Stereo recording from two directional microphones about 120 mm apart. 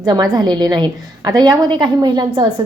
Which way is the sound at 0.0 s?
35° right (ahead or behind).